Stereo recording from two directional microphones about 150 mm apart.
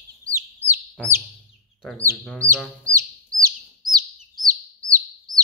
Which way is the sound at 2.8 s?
20° right (ahead or behind).